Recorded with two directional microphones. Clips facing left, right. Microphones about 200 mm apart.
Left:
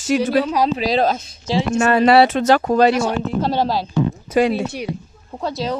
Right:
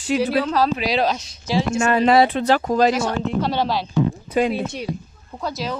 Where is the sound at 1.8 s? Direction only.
75° left (ahead or behind).